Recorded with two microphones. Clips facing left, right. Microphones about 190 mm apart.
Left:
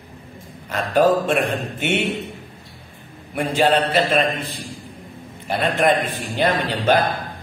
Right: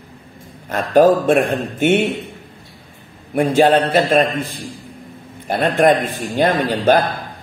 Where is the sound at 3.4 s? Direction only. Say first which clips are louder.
Right 5 dB; 50° right (ahead or behind).